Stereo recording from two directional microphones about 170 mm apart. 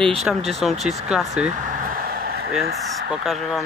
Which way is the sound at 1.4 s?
50° right (ahead or behind).